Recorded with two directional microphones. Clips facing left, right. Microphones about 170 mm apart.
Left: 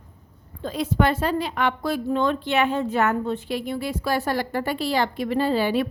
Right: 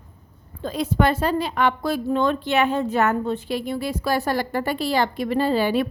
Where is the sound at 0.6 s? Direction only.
40° right (ahead or behind).